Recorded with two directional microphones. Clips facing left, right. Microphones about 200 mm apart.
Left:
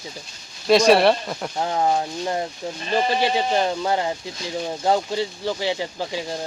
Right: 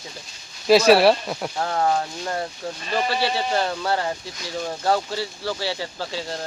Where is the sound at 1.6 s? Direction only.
15° left (ahead or behind).